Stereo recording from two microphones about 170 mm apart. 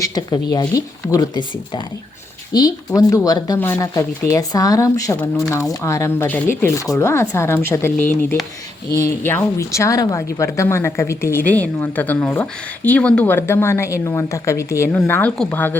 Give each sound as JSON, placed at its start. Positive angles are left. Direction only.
{"t": 0.0, "sound": "a woman's voice", "side_deg": 25}